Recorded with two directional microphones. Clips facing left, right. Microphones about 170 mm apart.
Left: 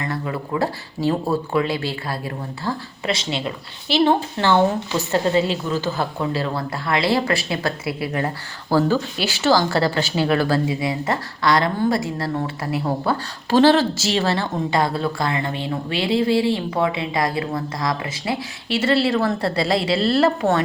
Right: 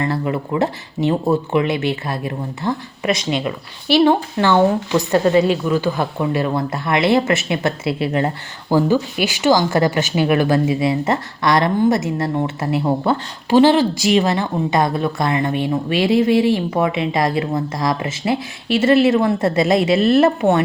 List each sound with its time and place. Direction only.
0.0 s speech: 25° right (ahead or behind)
4.4 s speech: 15° right (ahead or behind)
15.6 s speech: 25° left (ahead or behind)
16.2 s speech: 20° right (ahead or behind)